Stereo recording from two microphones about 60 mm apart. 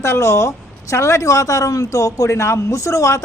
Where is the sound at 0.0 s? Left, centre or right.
Left.